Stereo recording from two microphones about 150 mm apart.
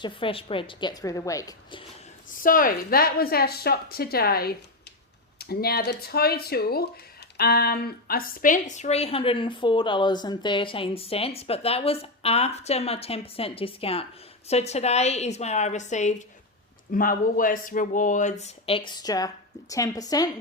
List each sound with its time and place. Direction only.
0.0 s a woman's voice: 35° left (ahead or behind)
2.3 s a woman's voice: 65° left (ahead or behind); by 16.2 s 50° left (ahead or behind)
16.9 s speech: 65° left (ahead or behind); by 20.3 s 25° left (ahead or behind)